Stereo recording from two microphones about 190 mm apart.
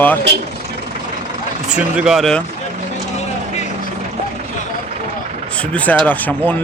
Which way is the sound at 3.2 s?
35° left (ahead or behind).